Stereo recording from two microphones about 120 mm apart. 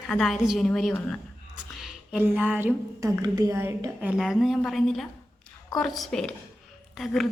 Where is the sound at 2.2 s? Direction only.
15° right (ahead or behind).